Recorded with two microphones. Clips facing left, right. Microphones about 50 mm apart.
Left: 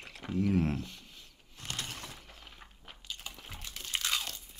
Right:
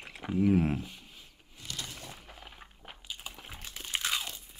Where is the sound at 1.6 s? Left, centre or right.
Left.